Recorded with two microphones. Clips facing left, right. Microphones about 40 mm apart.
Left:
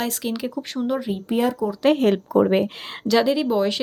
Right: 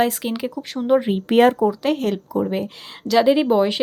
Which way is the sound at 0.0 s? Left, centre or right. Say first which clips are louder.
Right 5 dB; centre.